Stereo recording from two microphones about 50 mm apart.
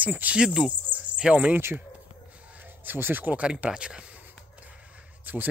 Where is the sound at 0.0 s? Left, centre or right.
Right.